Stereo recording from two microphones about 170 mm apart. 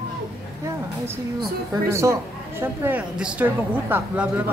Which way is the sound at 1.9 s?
15° right (ahead or behind).